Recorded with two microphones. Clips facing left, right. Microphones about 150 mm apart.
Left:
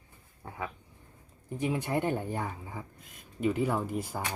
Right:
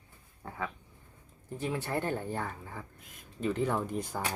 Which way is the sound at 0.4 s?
10° left (ahead or behind).